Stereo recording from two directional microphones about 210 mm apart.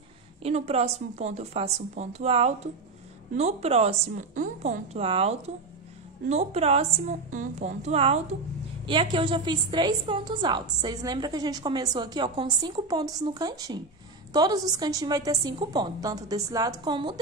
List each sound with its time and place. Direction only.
0.4 s a woman's voice: 30° right (ahead or behind)